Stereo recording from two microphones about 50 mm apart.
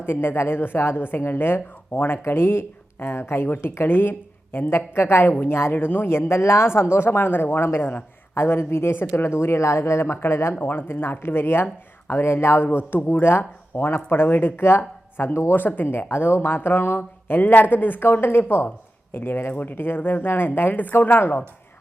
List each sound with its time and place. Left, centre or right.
0.0 s speech: left
2.1 s speech: left
7.8 s a man's voice: left
8.4 s speech: left
10.6 s speech: left
15.5 s speech: left